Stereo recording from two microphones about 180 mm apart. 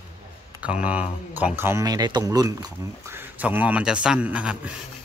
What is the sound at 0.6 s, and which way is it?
Speech, 5° right (ahead or behind).